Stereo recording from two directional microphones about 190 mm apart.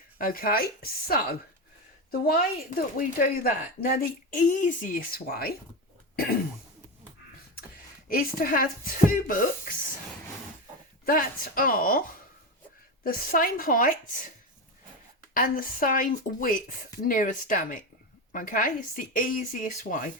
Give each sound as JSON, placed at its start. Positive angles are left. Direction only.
{"t": 0.2, "sound": "speech", "side_deg": 50}
{"t": 8.1, "sound": "speech", "side_deg": 50}
{"t": 11.0, "sound": "speech", "side_deg": 50}